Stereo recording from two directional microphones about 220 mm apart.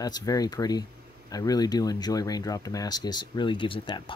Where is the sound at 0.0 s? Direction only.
15° left (ahead or behind).